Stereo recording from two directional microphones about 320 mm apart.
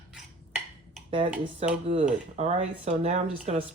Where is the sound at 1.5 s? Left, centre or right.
Centre.